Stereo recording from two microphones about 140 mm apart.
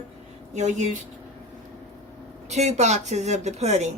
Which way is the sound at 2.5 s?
55° right (ahead or behind).